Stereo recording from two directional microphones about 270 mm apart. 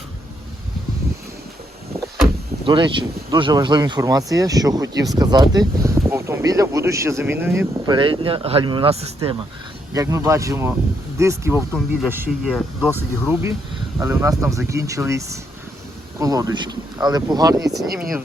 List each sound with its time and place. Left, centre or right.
2.6 s speech: centre
9.9 s speech: centre
17.8 s speech: right